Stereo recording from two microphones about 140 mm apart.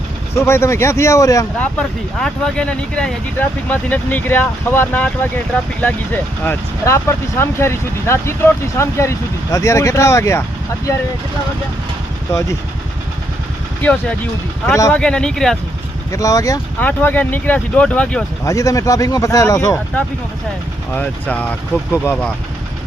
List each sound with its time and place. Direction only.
0.3 s speech: 20° left (ahead or behind)
1.5 s speech: 5° left (ahead or behind)
6.4 s speech: 15° left (ahead or behind)
12.3 s speech: 20° left (ahead or behind)
14.7 s speech: 25° left (ahead or behind)
14.9 s speech: 5° left (ahead or behind)
16.1 s speech: 25° left (ahead or behind)
16.8 s speech: 15° left (ahead or behind)
18.4 s speech: 25° left (ahead or behind)
20.9 s speech: 10° left (ahead or behind)